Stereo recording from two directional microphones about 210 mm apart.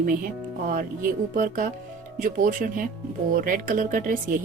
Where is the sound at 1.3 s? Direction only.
40° right (ahead or behind).